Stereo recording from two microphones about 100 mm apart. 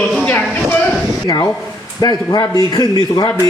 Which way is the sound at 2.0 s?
45° left (ahead or behind).